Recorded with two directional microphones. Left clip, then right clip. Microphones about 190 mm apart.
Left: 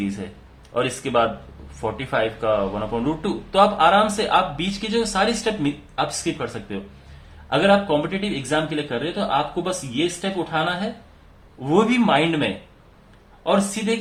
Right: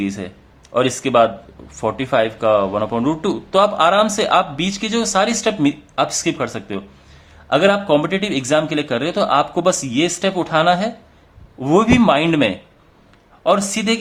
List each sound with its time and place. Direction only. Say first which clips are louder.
0.7 s a man's voice: right 6 dB; 35° right (ahead or behind)